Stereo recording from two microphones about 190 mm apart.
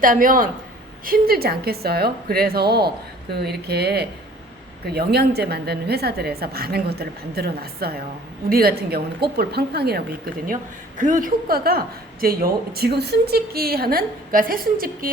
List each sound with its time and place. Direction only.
0.0 s a woman's voice: 45° right (ahead or behind)
10.4 s a woman's voice: 45° right (ahead or behind)